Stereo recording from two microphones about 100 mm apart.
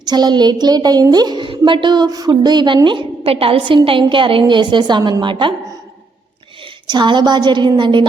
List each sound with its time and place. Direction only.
0.0 s a woman's voice: 45° right (ahead or behind)
3.2 s a woman's voice: 70° right (ahead or behind); by 5.5 s 55° right (ahead or behind)
6.8 s a woman's voice: 50° right (ahead or behind)